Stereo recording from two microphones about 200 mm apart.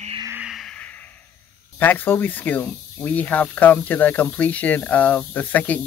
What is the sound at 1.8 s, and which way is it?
Speech, 10° left (ahead or behind).